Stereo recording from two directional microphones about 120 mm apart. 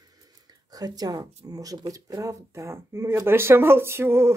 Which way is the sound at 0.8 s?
30° right (ahead or behind).